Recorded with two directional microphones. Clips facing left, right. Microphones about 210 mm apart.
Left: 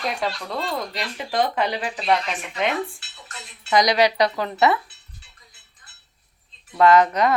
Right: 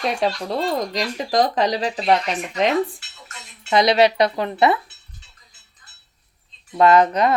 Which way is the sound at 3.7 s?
25° right (ahead or behind).